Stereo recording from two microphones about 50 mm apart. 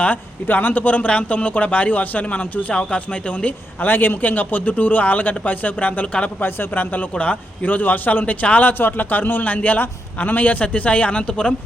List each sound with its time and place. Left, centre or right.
0.0 s a man's voice: left
6.4 s a man's voice: left
7.1 s a man's voice: left